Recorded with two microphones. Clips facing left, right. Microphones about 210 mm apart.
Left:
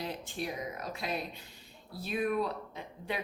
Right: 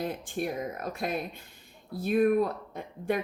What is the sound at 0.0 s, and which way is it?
Speech, 50° right (ahead or behind).